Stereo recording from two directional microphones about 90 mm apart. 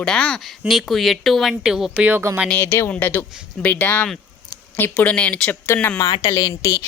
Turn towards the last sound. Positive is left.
turn(degrees=35)  # may be behind; listen again after turning